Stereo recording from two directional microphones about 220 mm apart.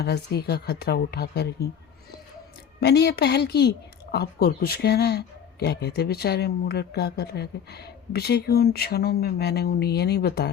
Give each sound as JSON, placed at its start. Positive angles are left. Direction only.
{"t": 0.0, "sound": "a woman's voice", "side_deg": 45}
{"t": 2.8, "sound": "a woman's voice", "side_deg": 50}